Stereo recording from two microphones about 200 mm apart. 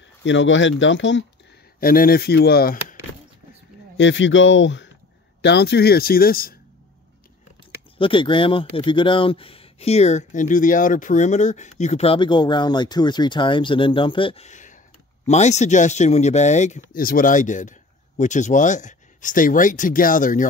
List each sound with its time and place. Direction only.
0.2 s speech: 65° left (ahead or behind)
1.8 s speech: 45° left (ahead or behind)
3.9 s speech: 65° left (ahead or behind)
5.4 s speech: 55° left (ahead or behind)
8.0 s speech: 25° left (ahead or behind); by 20.4 s 40° left (ahead or behind)